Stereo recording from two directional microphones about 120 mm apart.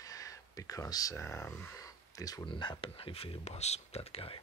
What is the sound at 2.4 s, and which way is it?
Speech, 45° left (ahead or behind).